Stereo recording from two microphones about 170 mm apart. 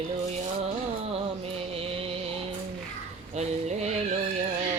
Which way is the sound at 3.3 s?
40° right (ahead or behind).